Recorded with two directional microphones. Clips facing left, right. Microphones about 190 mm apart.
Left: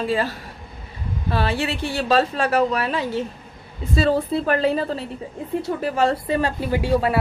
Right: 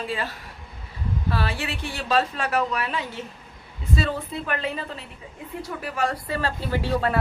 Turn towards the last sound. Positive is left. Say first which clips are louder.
# left 4 dB
turn(degrees=10)  # may be behind; listen again after turning